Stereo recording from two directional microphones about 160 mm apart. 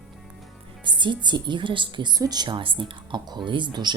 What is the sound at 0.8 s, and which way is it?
A woman's voice, 30° right (ahead or behind).